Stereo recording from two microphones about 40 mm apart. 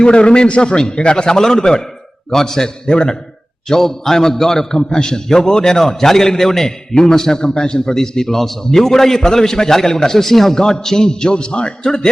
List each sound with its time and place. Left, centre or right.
0.0 s a man's voice: left
3.7 s a man's voice: centre